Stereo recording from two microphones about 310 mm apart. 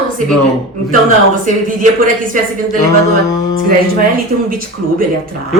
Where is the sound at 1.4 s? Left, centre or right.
Right.